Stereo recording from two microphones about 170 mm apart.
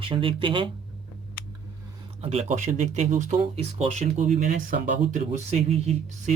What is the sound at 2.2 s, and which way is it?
Speech, 40° right (ahead or behind).